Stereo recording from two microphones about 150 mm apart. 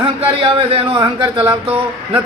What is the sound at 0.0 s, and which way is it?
A man's voice, 35° right (ahead or behind).